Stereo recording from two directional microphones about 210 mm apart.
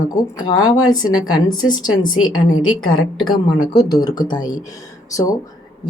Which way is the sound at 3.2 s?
20° left (ahead or behind).